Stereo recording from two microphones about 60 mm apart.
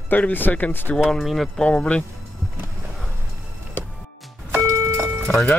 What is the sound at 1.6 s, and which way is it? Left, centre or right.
Speech, centre.